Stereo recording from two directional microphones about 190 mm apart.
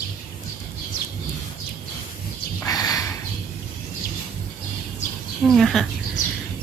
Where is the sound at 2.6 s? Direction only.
20° left (ahead or behind).